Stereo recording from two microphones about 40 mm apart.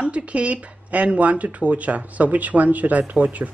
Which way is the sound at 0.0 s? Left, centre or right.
Right.